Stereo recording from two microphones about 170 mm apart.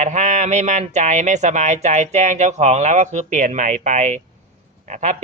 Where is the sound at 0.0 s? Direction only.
45° right (ahead or behind).